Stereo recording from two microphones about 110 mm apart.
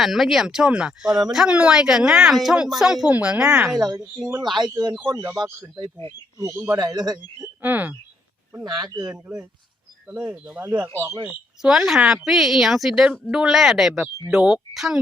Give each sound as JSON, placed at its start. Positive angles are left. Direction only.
{"t": 0.0, "sound": "speech", "side_deg": 0}
{"t": 4.5, "sound": "a man's voice", "side_deg": -40}
{"t": 6.7, "sound": "a man's voice", "side_deg": -40}
{"t": 7.6, "sound": "speech", "side_deg": -15}
{"t": 8.6, "sound": "a man's voice", "side_deg": -40}
{"t": 9.1, "sound": "speech", "side_deg": -10}
{"t": 10.9, "sound": "speech", "side_deg": -30}
{"t": 11.3, "sound": "speech", "side_deg": -5}